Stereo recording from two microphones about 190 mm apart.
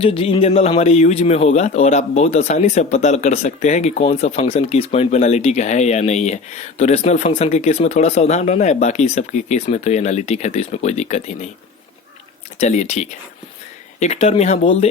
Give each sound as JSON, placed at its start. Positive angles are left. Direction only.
{"t": 0.0, "sound": "speech", "side_deg": 30}
{"t": 12.5, "sound": "speech", "side_deg": 35}